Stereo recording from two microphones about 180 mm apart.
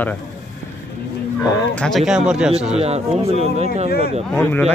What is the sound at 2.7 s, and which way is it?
Speech, 35° right (ahead or behind).